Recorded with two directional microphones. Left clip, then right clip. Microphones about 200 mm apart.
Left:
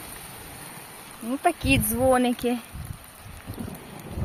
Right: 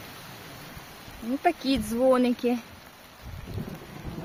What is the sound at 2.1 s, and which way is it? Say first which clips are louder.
Speech: left 1 dB; 10° right (ahead or behind).